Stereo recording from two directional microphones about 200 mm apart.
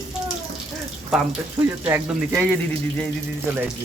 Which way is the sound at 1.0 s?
5° right (ahead or behind).